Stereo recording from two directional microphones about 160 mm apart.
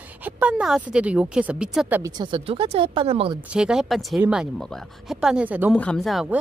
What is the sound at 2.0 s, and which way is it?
Speech, 25° right (ahead or behind).